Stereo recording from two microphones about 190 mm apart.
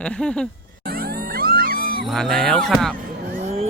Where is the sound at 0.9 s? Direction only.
50° right (ahead or behind).